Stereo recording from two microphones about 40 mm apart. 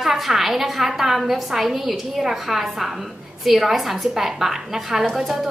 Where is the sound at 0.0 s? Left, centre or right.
Centre.